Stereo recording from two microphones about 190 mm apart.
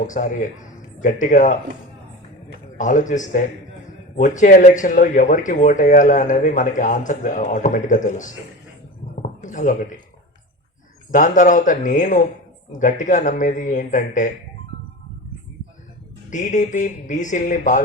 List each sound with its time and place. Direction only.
0.1 s speech: 45° left (ahead or behind)
2.7 s speech: 40° left (ahead or behind)
9.2 s a sound: 40° left (ahead or behind)
11.1 s speech: 40° left (ahead or behind)
16.3 s speech: 40° left (ahead or behind)